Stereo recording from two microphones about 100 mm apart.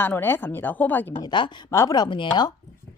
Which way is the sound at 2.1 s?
50° left (ahead or behind).